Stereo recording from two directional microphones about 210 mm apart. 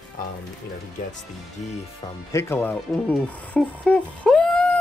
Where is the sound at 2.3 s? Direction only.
10° left (ahead or behind).